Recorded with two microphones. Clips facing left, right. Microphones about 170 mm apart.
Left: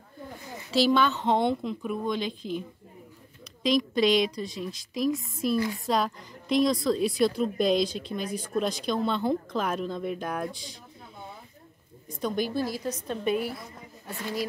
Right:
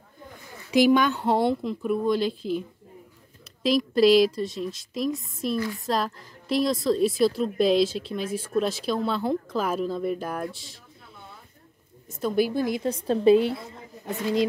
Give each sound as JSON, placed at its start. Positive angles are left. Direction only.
{"t": 0.7, "sound": "a woman's voice", "side_deg": -15}
{"t": 3.6, "sound": "a woman's voice", "side_deg": -5}
{"t": 12.1, "sound": "a woman's voice", "side_deg": -5}